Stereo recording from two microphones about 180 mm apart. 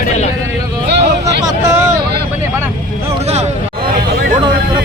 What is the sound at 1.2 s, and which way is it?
Speech, 15° right (ahead or behind).